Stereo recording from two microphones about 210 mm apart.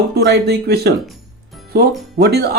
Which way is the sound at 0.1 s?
50° right (ahead or behind).